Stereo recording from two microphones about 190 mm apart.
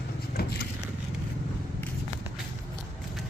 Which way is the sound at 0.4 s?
55° left (ahead or behind).